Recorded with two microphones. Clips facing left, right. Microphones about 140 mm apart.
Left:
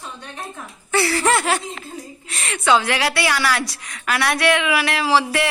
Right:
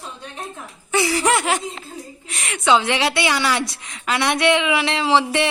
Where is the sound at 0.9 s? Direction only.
15° right (ahead or behind).